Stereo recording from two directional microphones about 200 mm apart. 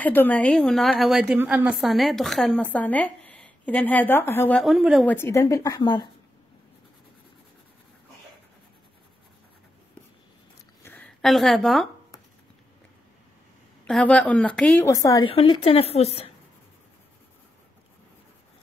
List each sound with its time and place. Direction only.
0.0 s a woman's voice: 10° left (ahead or behind)
5.1 s a woman's voice: 15° left (ahead or behind)
10.8 s a sound: 10° left (ahead or behind)
13.8 s a woman's voice: 5° left (ahead or behind)
15.3 s a woman's voice: 30° left (ahead or behind)